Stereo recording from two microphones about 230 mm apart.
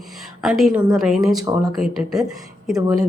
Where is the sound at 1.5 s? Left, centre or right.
Centre.